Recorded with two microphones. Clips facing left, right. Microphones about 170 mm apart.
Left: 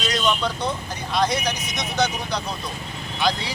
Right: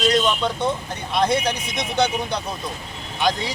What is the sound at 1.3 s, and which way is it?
Speech, 30° right (ahead or behind).